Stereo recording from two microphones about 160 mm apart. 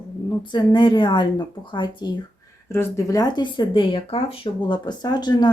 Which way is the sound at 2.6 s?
15° left (ahead or behind).